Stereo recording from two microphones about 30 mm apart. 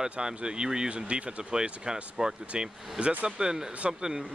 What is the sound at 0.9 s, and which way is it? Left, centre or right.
Speech, right.